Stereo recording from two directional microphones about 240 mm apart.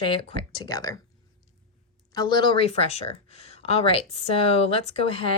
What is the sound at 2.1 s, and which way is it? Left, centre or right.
Speech, centre.